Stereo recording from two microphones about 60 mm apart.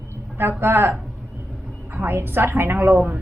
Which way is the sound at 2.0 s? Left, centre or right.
Right.